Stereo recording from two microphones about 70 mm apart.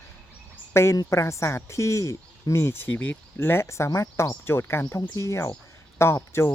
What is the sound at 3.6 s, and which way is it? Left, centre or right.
Speech, left.